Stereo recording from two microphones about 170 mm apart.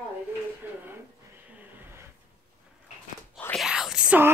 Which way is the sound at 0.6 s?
10° right (ahead or behind).